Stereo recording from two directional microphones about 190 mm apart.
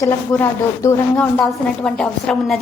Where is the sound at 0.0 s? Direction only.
15° left (ahead or behind).